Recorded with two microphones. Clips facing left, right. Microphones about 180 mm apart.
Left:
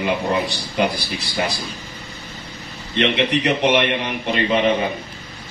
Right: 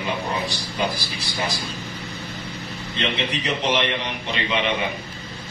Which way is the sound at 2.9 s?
65° left (ahead or behind).